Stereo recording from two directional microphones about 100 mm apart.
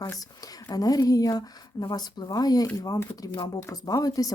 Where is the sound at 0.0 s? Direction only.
40° left (ahead or behind).